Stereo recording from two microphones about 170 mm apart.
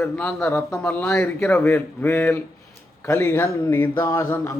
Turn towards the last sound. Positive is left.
turn(degrees=15)  # may be behind; listen again after turning